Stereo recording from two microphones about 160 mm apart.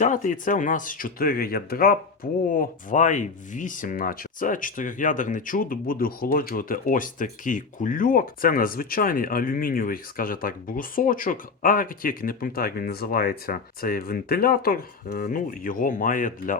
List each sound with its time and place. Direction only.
0.0 s speech: 55° left (ahead or behind); by 2.0 s 70° left (ahead or behind)
2.5 s speech: 55° left (ahead or behind)